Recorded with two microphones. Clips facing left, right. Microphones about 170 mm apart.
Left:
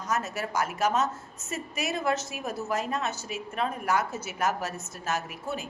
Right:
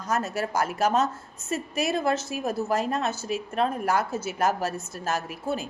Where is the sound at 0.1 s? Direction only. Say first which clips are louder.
Right 4 dB; 30° right (ahead or behind).